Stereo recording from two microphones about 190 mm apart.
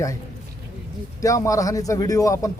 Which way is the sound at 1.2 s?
15° left (ahead or behind).